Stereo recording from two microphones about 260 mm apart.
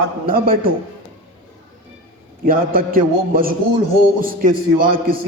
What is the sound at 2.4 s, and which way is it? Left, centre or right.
A man's voice, right.